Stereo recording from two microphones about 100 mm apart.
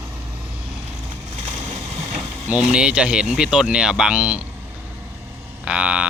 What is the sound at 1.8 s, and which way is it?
Vehicle, 80° right.